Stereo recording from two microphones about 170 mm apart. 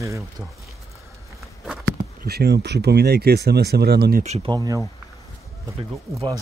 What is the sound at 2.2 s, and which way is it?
Speech, 70° right (ahead or behind).